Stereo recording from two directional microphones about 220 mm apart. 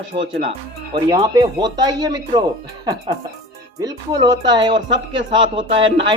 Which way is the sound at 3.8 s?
15° right (ahead or behind).